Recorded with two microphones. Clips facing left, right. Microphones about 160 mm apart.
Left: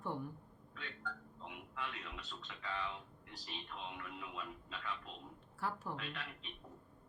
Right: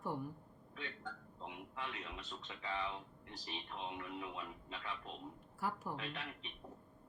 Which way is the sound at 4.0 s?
20° right (ahead or behind).